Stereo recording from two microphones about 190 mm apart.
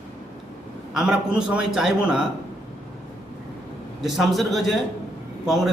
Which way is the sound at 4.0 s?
Centre (ahead or behind).